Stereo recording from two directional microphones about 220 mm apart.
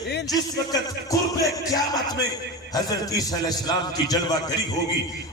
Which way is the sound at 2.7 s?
15° left (ahead or behind).